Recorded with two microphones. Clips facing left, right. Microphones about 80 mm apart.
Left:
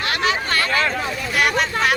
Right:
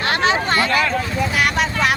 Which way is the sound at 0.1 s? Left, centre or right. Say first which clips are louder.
Right 4 dB; right.